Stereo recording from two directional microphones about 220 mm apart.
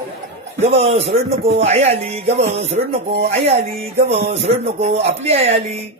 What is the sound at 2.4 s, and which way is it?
Speech, 50° right (ahead or behind).